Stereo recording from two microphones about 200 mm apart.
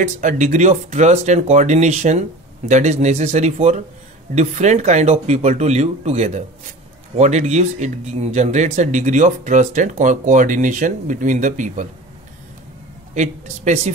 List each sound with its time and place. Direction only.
0.0 s speech: 40° right (ahead or behind)
13.1 s speech: 35° right (ahead or behind)